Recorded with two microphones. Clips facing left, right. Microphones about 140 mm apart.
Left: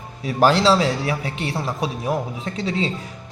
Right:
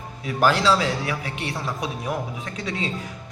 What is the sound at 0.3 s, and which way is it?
A man's voice, 30° left (ahead or behind).